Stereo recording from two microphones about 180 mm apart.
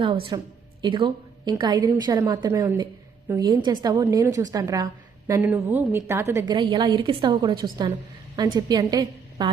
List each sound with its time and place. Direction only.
0.0 s a woman's voice: 25° right (ahead or behind)